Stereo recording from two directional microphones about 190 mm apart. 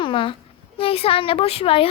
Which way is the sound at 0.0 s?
25° left (ahead or behind).